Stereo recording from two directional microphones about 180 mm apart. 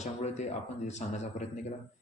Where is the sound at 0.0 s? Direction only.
40° left (ahead or behind).